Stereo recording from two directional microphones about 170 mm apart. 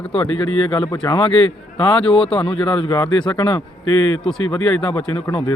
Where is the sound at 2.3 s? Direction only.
30° left (ahead or behind).